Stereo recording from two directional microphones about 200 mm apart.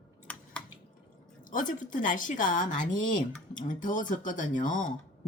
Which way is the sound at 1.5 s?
40° left (ahead or behind).